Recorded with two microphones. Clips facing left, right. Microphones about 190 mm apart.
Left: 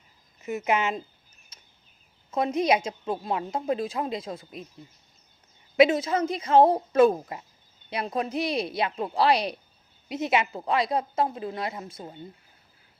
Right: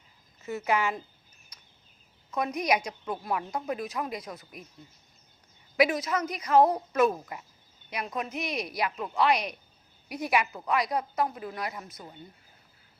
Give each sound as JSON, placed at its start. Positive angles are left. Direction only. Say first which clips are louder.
{"t": 0.4, "sound": "a woman's voice", "louder": "left 2 dB", "side_deg": 20}
{"t": 1.5, "sound": "a sound", "louder": "left 2 dB", "side_deg": 25}
{"t": 2.3, "sound": "a woman's voice", "louder": "left 4 dB", "side_deg": 25}
{"t": 5.7, "sound": "a woman's voice", "louder": "left 5 dB", "side_deg": 25}